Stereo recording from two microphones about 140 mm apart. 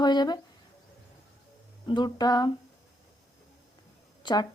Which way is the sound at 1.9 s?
30° left (ahead or behind).